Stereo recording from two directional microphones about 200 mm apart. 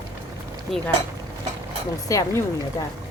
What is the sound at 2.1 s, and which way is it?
Speech, 15° left (ahead or behind).